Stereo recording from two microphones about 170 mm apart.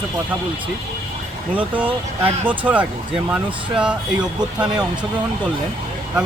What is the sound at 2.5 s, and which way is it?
Speech, 10° right (ahead or behind).